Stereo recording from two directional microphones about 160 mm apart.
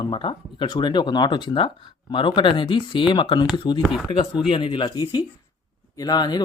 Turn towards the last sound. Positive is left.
turn(degrees=25)  # may be behind; listen again after turning